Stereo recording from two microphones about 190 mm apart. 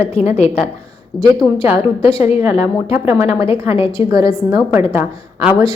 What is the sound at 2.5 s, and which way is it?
Speech, 10° right (ahead or behind).